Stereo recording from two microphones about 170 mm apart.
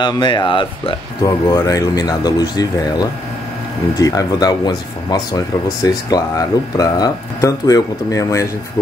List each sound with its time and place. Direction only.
0.0 s speech: 25° left (ahead or behind)